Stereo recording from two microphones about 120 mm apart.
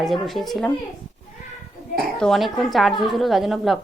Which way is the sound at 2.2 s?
Centre (ahead or behind).